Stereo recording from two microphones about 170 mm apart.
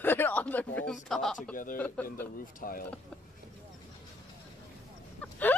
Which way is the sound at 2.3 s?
55° left (ahead or behind).